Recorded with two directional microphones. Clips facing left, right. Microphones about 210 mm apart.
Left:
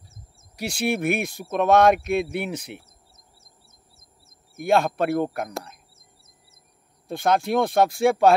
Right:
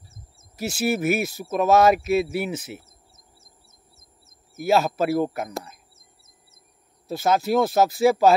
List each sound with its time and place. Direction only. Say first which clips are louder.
0.6 s speech: right 1 dB; 5° right (ahead or behind)
3.3 s a sound: right 1 dB; 25° right (ahead or behind)
4.6 s speech: even; 5° right (ahead or behind)
7.1 s speech: right 1 dB; 5° right (ahead or behind)